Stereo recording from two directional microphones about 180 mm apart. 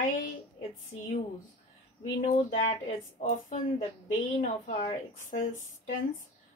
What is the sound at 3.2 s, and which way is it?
Speech, 50° left (ahead or behind).